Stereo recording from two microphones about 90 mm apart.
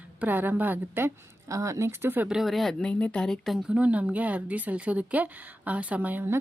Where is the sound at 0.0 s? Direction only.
20° right (ahead or behind).